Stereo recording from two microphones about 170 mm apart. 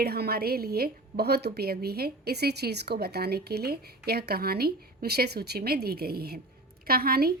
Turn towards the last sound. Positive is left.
turn(degrees=-65)  # may be behind; listen again after turning